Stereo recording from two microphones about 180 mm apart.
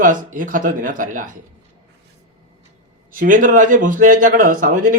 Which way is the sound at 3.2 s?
50° right (ahead or behind).